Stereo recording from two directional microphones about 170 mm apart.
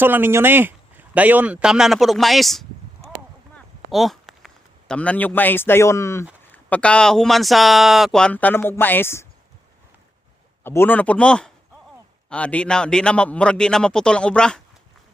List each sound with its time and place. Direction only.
0.0 s speech: 10° right (ahead or behind)
3.9 s a man's voice: centre (ahead or behind)
10.6 s speech: 15° left (ahead or behind)